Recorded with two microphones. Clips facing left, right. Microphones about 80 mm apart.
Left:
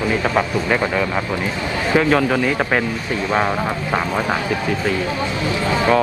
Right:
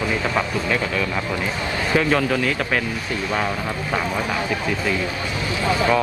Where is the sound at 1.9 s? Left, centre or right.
Centre.